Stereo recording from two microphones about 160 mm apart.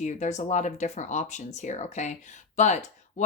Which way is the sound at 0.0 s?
50° left (ahead or behind).